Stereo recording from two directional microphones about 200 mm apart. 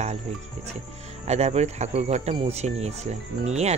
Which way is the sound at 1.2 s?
35° right (ahead or behind).